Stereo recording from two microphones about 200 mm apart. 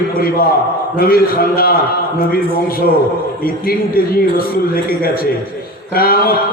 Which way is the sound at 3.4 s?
50° left (ahead or behind).